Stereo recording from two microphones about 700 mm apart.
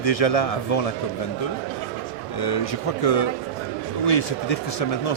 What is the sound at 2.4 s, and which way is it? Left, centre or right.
Speech, left.